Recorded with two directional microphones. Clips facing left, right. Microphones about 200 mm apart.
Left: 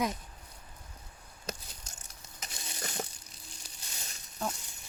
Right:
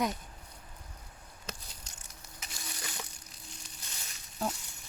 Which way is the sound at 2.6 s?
20° left (ahead or behind).